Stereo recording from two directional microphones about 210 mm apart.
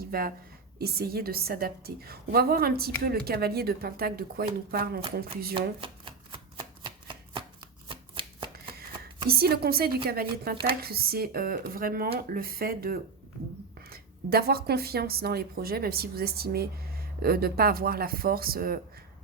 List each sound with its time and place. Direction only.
0.0 s a woman's voice: 45° right (ahead or behind)
5.5 s chopping: 25° right (ahead or behind)
7.9 s shuffling cards: 25° right (ahead or behind)
9.3 s a woman's voice: 45° right (ahead or behind)